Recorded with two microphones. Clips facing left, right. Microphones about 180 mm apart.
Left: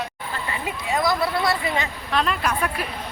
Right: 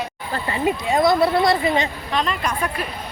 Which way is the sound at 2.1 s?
5° left (ahead or behind).